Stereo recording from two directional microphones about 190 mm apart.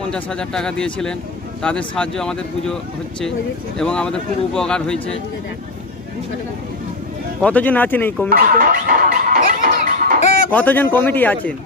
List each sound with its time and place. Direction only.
0.1 s speech: 5° left (ahead or behind)
7.4 s speech: 10° left (ahead or behind)
8.3 s music: 50° right (ahead or behind)
10.5 s speech: 10° left (ahead or behind)